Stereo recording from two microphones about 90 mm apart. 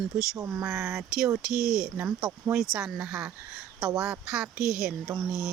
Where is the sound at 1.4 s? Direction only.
5° right (ahead or behind).